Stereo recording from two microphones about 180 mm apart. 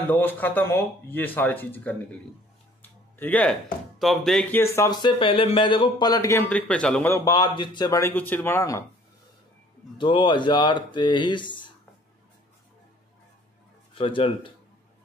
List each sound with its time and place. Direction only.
0.1 s speech: 10° left (ahead or behind)
2.8 s a sound: 10° left (ahead or behind)
4.0 s speech: centre (ahead or behind)
9.9 s speech: 25° left (ahead or behind)
13.9 s speech: 30° left (ahead or behind)